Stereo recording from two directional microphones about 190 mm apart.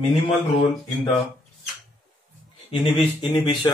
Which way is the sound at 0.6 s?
25° left (ahead or behind).